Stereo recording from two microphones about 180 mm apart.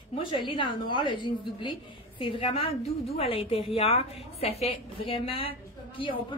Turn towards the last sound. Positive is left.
turn(degrees=30)  # may be behind; listen again after turning